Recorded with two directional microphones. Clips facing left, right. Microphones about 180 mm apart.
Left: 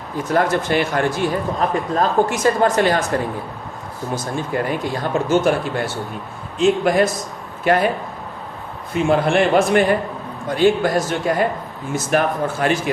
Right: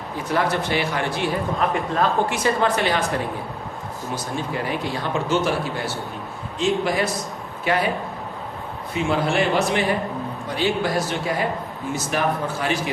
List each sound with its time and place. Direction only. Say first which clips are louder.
0.3 s speech: left 4 dB; 45° left (ahead or behind)
4.1 s speech: left 4 dB; 45° left (ahead or behind)
9.0 s speech: left 5 dB; 55° left (ahead or behind)